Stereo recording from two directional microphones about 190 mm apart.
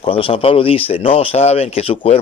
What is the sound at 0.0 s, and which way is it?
Speech, 30° left (ahead or behind).